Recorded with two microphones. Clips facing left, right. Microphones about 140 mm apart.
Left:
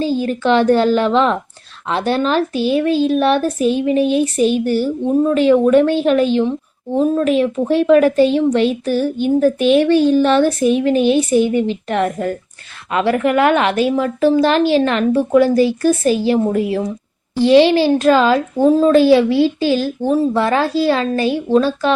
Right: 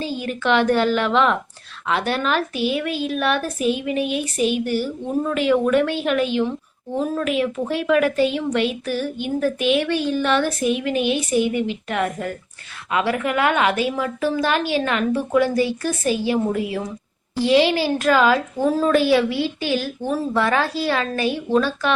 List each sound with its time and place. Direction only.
0.0 s a woman's voice: 35° left (ahead or behind)